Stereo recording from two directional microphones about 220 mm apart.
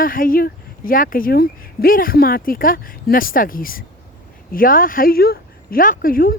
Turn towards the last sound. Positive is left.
turn(degrees=40)  # may be behind; listen again after turning